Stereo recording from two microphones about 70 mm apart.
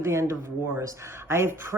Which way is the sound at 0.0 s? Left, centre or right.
Right.